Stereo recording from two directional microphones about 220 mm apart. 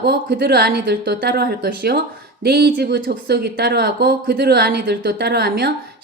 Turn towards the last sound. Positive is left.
turn(degrees=-45)  # may be behind; listen again after turning